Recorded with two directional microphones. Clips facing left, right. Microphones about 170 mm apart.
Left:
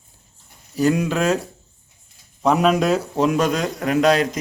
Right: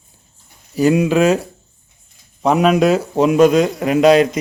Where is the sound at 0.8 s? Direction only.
10° right (ahead or behind).